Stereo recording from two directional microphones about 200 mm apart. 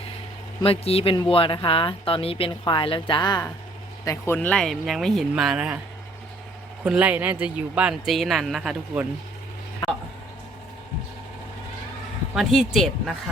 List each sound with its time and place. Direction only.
0.6 s speech: 30° left (ahead or behind); by 5.8 s 5° right (ahead or behind)
6.8 s speech: 5° right (ahead or behind)
12.3 s speech: centre (ahead or behind)